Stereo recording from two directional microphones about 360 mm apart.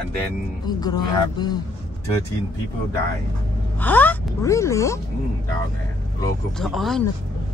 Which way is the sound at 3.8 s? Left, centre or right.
Centre.